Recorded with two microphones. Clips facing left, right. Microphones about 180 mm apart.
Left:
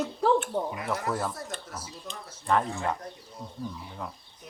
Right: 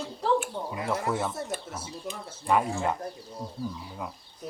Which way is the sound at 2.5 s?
10° right (ahead or behind).